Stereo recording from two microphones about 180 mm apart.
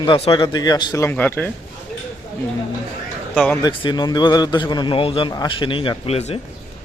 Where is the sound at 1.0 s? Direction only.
10° left (ahead or behind).